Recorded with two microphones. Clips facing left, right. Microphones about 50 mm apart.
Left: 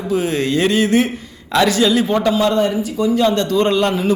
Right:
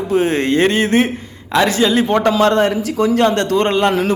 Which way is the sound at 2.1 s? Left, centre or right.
Right.